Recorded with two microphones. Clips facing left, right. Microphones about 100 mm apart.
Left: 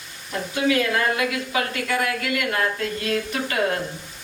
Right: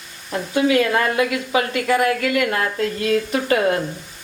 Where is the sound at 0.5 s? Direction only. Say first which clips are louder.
Right 4 dB; 25° right (ahead or behind).